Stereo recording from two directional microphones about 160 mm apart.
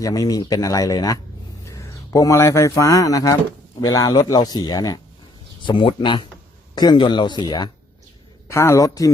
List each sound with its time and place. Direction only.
0.0 s speech: 20° left (ahead or behind)